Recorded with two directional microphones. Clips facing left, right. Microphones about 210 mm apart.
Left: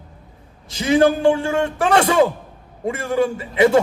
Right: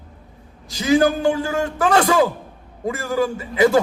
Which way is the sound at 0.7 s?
25° left (ahead or behind).